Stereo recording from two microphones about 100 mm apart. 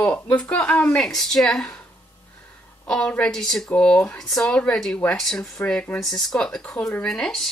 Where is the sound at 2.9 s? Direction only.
10° left (ahead or behind).